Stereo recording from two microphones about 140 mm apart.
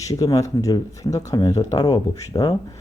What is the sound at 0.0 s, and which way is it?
Speech, 25° left (ahead or behind).